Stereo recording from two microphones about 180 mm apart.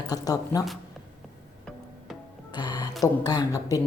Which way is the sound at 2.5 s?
25° left (ahead or behind).